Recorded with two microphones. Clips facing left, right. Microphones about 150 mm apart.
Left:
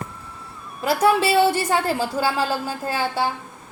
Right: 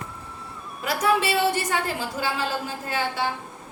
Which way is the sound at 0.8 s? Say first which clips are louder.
Left 5 dB; 30° left (ahead or behind).